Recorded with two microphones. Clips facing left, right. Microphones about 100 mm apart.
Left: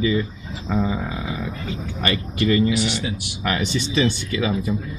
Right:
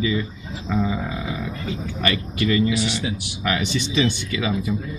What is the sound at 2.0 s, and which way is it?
Speech, 30° left (ahead or behind).